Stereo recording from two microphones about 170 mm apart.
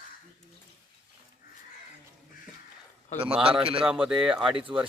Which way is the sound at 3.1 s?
30° right (ahead or behind).